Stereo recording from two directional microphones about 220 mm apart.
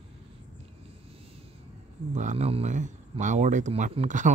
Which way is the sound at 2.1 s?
30° right (ahead or behind).